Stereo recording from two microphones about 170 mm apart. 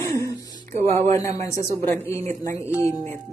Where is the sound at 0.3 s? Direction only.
20° left (ahead or behind).